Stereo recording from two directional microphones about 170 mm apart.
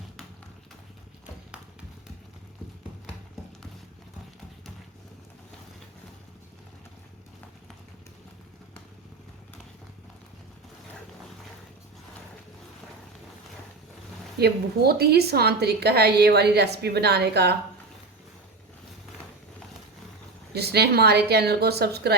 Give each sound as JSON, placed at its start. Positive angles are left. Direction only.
{"t": 14.3, "sound": "a woman's voice", "side_deg": -70}
{"t": 20.5, "sound": "a woman's voice", "side_deg": -70}